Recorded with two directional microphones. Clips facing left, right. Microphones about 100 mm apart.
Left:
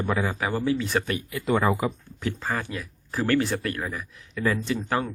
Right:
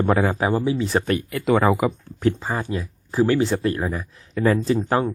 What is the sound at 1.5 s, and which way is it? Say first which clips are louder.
Speech: right 5 dB; 90° right.